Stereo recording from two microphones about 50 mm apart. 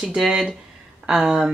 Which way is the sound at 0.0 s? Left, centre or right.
Centre.